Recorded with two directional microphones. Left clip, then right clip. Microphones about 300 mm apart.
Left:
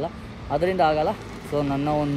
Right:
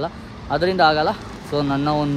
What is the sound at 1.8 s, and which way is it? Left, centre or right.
Speech, right.